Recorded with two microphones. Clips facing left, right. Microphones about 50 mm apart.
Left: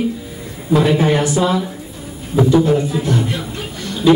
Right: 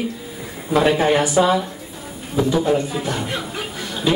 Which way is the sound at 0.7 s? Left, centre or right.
Centre.